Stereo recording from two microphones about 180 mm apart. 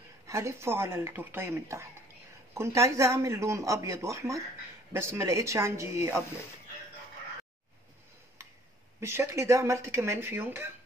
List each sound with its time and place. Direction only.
0.3 s speech: 15° right (ahead or behind)
9.0 s speech: 15° right (ahead or behind)